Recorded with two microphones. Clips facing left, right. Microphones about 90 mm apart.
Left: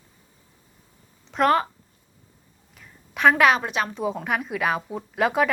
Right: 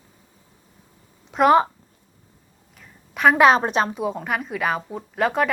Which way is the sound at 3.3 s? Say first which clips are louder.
Right 4 dB; 30° right (ahead or behind).